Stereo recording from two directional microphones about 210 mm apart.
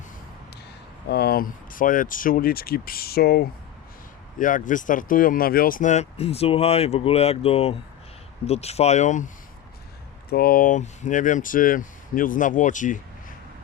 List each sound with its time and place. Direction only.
1.0 s speech: 50° left (ahead or behind)